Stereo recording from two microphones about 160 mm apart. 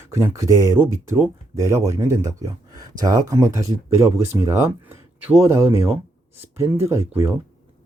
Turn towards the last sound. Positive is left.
turn(degrees=-15)  # may be behind; listen again after turning